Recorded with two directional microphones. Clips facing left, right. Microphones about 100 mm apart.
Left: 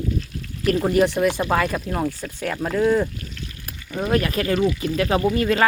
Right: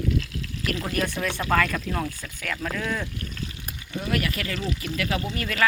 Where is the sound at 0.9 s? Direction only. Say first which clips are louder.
Left 9 dB; 20° left (ahead or behind).